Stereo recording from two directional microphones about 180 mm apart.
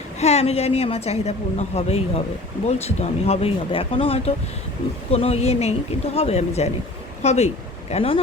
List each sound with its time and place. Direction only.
0.2 s a woman's voice: 35° left (ahead or behind)